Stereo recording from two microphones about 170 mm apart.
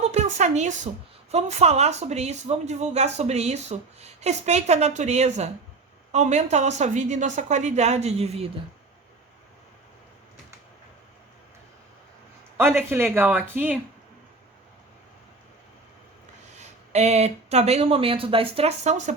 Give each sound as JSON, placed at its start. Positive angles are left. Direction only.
{"t": 0.0, "sound": "a woman's voice", "side_deg": -40}
{"t": 12.5, "sound": "speech", "side_deg": -15}
{"t": 16.6, "sound": "speech", "side_deg": -40}